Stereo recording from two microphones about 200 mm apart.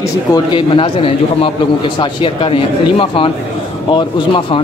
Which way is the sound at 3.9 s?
25° left (ahead or behind).